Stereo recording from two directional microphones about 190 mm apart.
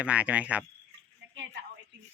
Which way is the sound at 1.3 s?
70° right (ahead or behind).